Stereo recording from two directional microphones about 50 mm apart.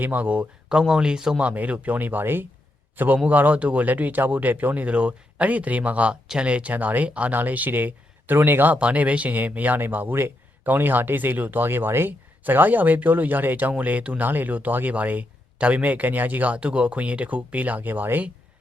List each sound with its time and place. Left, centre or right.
0.0 s speech: right
0.7 s speech: centre
1.4 s a man's voice: right
8.7 s speech: right
12.4 s speech: right